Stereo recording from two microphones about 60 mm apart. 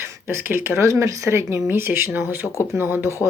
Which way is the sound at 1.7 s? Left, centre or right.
Right.